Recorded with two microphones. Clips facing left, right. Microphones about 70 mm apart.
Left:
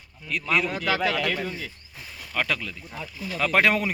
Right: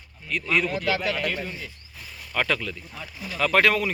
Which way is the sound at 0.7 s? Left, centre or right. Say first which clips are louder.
Left 1 dB; left.